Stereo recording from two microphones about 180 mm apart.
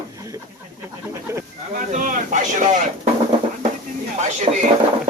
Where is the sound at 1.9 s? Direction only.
45° right (ahead or behind).